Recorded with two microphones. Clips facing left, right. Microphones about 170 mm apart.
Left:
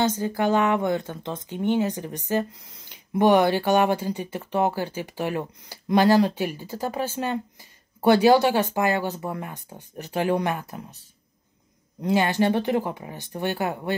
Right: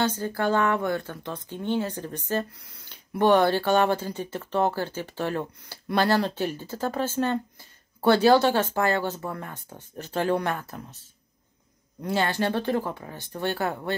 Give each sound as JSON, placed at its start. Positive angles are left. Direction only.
{"t": 0.0, "sound": "speech", "side_deg": 15}
{"t": 12.0, "sound": "speech", "side_deg": 15}